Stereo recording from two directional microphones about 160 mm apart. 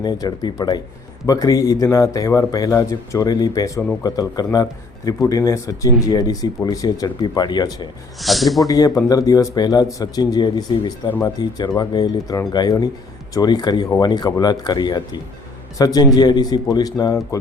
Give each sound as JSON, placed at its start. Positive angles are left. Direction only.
{"t": 0.0, "sound": "speech", "side_deg": 25}
{"t": 8.2, "sound": "speech", "side_deg": 0}
{"t": 8.6, "sound": "speech", "side_deg": 20}